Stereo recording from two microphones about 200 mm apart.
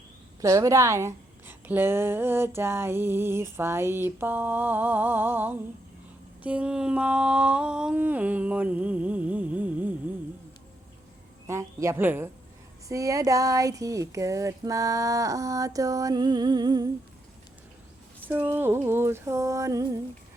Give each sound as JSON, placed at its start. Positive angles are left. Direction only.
{"t": 0.4, "sound": "a woman's voice", "side_deg": -15}
{"t": 11.4, "sound": "a woman's voice", "side_deg": -15}
{"t": 18.3, "sound": "a woman's voice", "side_deg": -10}